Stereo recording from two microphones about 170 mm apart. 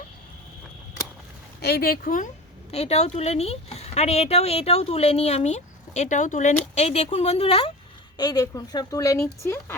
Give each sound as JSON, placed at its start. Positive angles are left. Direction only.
{"t": 1.6, "sound": "speech", "side_deg": 65}
{"t": 2.7, "sound": "speech", "side_deg": 40}
{"t": 8.2, "sound": "a woman's voice", "side_deg": 20}